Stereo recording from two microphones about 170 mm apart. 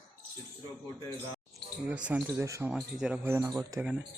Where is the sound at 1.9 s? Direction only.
10° right (ahead or behind).